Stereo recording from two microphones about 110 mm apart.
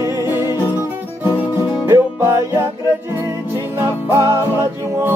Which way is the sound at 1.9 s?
25° right (ahead or behind).